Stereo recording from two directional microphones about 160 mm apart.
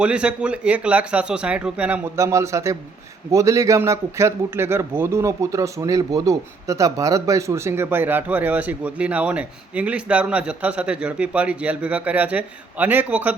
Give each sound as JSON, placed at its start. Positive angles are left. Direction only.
{"t": 0.0, "sound": "a man's voice", "side_deg": -5}
{"t": 2.1, "sound": "a man's voice", "side_deg": -20}